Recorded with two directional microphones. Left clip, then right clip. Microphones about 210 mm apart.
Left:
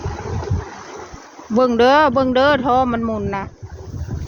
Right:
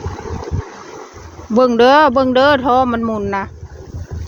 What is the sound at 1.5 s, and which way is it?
Speech, 15° right (ahead or behind).